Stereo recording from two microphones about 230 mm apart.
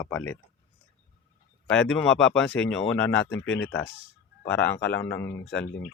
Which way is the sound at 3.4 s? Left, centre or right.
Left.